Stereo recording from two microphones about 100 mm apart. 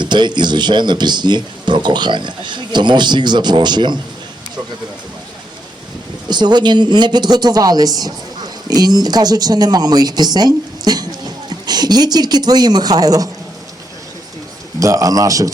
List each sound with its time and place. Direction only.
0.0 s speech: 50° right (ahead or behind)
6.2 s speech: 45° right (ahead or behind)
14.8 s a man's voice: 35° right (ahead or behind)